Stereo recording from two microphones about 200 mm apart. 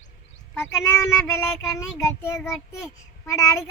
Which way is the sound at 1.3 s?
15° left (ahead or behind).